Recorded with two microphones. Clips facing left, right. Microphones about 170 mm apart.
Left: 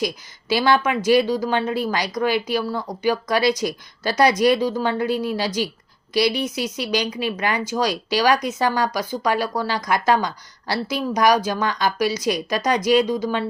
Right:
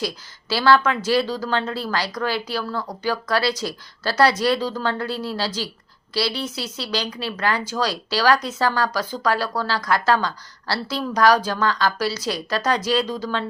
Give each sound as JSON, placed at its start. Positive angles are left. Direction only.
{"t": 0.0, "sound": "speech", "side_deg": 15}